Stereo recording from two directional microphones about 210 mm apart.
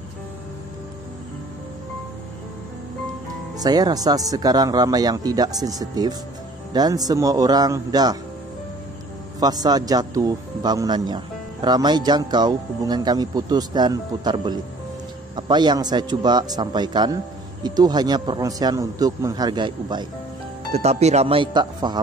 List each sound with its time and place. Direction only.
3.5 s speech: 20° right (ahead or behind)
9.4 s speech: 20° right (ahead or behind)